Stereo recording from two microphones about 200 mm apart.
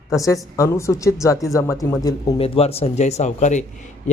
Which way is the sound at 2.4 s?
30° left (ahead or behind).